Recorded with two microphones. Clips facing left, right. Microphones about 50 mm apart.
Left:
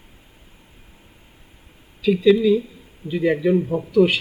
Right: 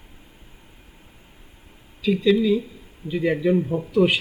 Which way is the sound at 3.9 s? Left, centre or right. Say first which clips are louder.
Left 3 dB; centre.